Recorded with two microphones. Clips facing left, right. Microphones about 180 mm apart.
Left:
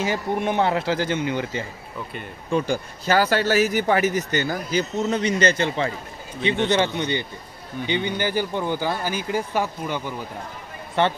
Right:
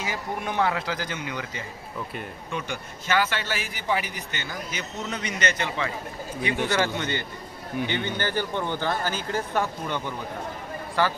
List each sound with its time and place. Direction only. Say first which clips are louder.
0.0 s speech: left 7 dB; 25° left (ahead or behind)
6.7 s speech: left 4 dB; 20° left (ahead or behind)
11.0 s speech: left 4 dB; 25° left (ahead or behind)